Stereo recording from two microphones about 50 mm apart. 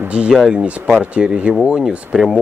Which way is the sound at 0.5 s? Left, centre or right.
Right.